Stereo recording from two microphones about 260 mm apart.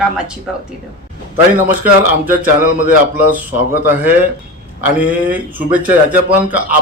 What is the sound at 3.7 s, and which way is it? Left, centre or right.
A man's voice, centre.